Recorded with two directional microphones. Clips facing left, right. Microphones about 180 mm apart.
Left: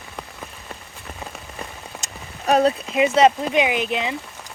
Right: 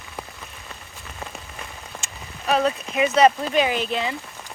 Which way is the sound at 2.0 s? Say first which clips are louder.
Left 4 dB; 40° left (ahead or behind).